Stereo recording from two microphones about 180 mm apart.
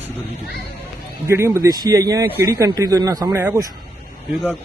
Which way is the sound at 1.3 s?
15° right (ahead or behind).